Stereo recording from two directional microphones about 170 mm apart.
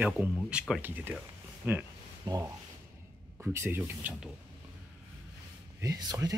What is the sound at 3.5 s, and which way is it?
Speech, 15° right (ahead or behind).